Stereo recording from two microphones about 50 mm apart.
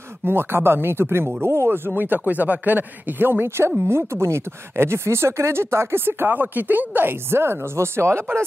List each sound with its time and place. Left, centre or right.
0.2 s speech: right
1.9 s speech: right
3.8 s speech: right